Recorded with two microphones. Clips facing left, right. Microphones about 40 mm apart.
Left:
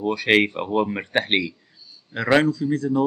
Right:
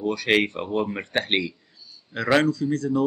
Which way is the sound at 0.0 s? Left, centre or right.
Centre.